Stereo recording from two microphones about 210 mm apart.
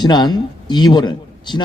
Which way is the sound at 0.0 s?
20° left (ahead or behind).